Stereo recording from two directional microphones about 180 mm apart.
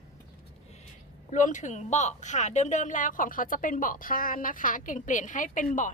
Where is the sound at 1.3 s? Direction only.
45° left (ahead or behind).